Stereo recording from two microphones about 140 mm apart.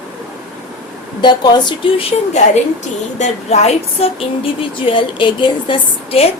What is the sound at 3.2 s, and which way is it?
A woman's voice, 50° left (ahead or behind).